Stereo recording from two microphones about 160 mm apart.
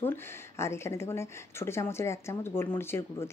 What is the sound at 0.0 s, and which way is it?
Speech, 15° left (ahead or behind).